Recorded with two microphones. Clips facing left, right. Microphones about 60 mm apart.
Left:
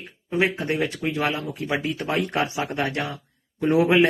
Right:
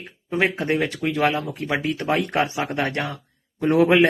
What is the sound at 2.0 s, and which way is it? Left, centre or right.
A man's voice, right.